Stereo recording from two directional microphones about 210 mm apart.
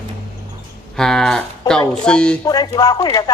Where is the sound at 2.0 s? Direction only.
5° left (ahead or behind).